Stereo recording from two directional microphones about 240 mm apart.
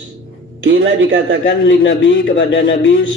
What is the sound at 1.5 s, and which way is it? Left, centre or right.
A man's voice, left.